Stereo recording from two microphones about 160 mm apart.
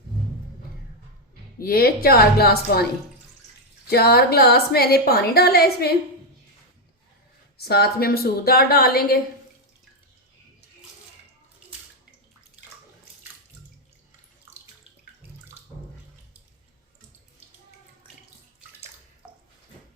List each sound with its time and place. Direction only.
1.5 s a woman's voice: 65° left (ahead or behind)
3.8 s a woman's voice: 80° left
7.6 s a woman's voice: 80° left